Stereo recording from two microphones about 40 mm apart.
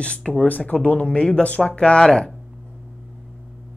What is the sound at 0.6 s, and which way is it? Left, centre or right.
A woman's voice, left.